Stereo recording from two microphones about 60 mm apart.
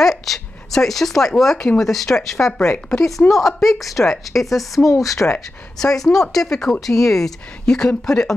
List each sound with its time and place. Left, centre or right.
0.0 s speech: centre
4.8 s speech: left
5.8 s speech: centre